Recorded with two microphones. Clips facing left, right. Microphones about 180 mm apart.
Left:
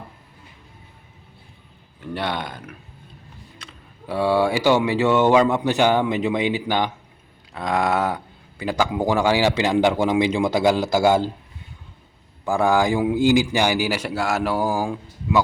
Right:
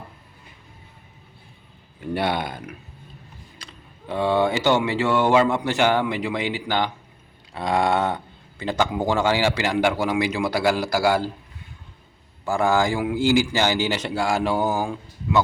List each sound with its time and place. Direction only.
2.1 s speech: 10° right (ahead or behind)
3.6 s a man's voice: 5° left (ahead or behind)
7.5 s a man's voice: centre (ahead or behind); by 11.2 s 20° left (ahead or behind)
12.5 s a man's voice: 15° left (ahead or behind)